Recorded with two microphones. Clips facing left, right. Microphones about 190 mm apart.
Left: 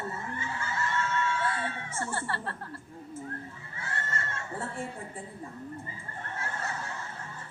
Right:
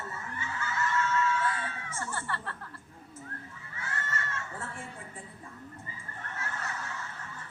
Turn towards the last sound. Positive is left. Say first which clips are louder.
# left 2 dB
turn(degrees=30)  # may be behind; listen again after turning